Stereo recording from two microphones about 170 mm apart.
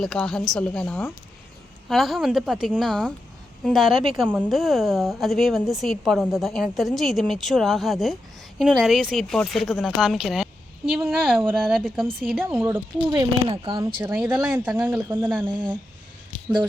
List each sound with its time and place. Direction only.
0.0 s a woman's voice: 5° left (ahead or behind)
11.3 s speech: 10° right (ahead or behind)
12.2 s a woman's voice: centre (ahead or behind)
12.5 s speech: 15° right (ahead or behind)
13.5 s speech: 30° right (ahead or behind)
14.0 s speech: 10° right (ahead or behind)
15.4 s speech: 25° right (ahead or behind)